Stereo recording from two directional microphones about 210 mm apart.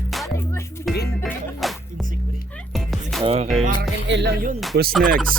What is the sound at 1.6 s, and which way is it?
Music, centre (ahead or behind).